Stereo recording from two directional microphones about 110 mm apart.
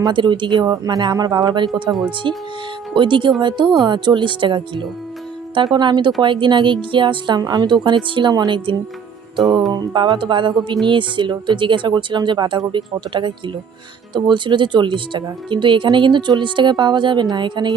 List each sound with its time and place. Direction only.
0.0 s speech: 45° right (ahead or behind)
9.4 s music: centre (ahead or behind)
9.7 s speech: 40° right (ahead or behind)